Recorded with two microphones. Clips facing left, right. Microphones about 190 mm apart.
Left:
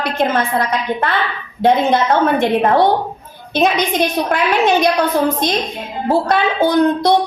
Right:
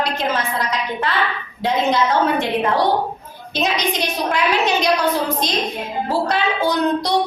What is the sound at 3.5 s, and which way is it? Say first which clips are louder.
A woman's voice: left 5 dB; 55° left (ahead or behind).